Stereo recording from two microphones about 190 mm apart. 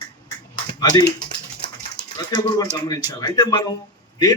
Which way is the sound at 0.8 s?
20° left (ahead or behind).